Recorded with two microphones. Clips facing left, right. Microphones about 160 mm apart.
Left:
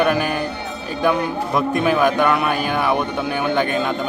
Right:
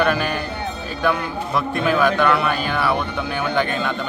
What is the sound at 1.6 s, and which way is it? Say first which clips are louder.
Speech: left 2 dB; 15° left (ahead or behind).